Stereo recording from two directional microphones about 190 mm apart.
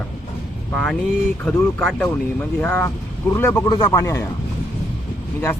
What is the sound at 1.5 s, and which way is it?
Speech, 5° left (ahead or behind).